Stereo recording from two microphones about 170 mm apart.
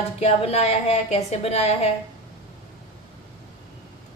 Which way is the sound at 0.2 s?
35° left (ahead or behind).